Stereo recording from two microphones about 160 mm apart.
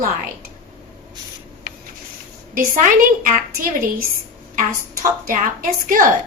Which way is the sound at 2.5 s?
60° right (ahead or behind).